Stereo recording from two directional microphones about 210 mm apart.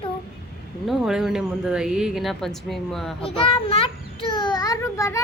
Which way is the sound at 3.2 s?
25° left (ahead or behind).